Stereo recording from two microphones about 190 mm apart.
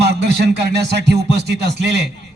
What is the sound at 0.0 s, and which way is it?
A man's voice, 60° right (ahead or behind).